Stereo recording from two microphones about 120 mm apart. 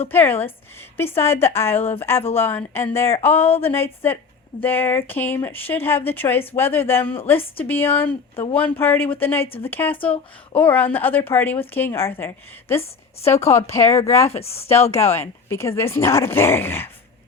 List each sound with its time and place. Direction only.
0.1 s speech: 15° left (ahead or behind)
14.4 s speech: 55° left (ahead or behind)
14.9 s speech: 20° left (ahead or behind)